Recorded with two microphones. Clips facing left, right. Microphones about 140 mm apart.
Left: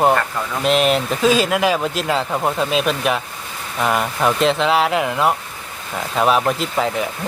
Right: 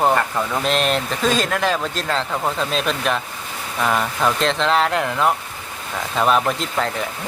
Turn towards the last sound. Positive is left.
turn(degrees=5)  # may be behind; listen again after turning